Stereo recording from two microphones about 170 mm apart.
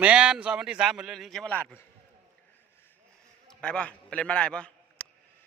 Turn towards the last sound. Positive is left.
turn(degrees=5)  # may be behind; listen again after turning